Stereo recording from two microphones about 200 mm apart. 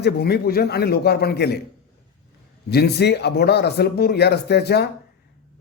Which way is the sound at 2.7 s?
55° left (ahead or behind).